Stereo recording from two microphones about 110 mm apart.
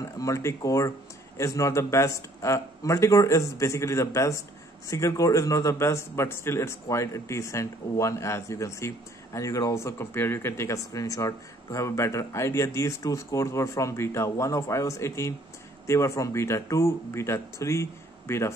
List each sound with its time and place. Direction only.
0.2 s speech: 30° left (ahead or behind)